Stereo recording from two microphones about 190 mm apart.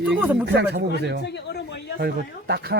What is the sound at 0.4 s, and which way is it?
Speech, 60° right (ahead or behind).